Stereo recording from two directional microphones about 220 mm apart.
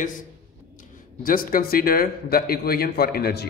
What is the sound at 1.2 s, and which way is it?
Speech, 40° left (ahead or behind).